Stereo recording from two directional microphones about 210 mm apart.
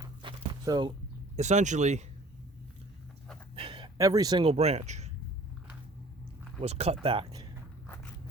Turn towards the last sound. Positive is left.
turn(degrees=-20)  # may be behind; listen again after turning